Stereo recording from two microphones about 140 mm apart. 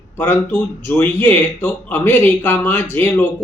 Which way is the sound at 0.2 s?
15° left (ahead or behind).